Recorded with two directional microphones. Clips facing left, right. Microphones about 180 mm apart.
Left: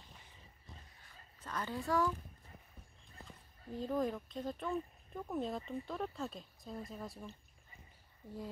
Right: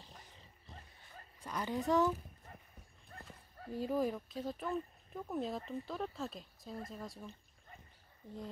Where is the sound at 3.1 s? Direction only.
65° right (ahead or behind).